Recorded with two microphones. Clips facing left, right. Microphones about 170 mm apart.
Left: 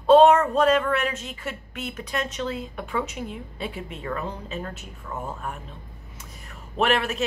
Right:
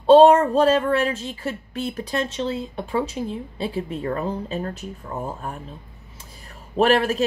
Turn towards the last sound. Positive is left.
turn(degrees=-35)  # may be behind; listen again after turning